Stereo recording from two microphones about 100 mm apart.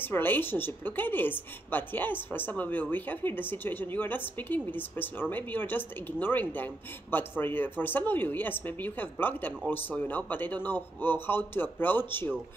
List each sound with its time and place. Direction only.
0.0 s a woman's voice: 20° left (ahead or behind)